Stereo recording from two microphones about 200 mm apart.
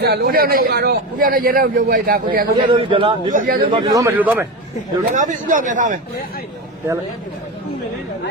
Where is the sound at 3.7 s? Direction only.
20° right (ahead or behind).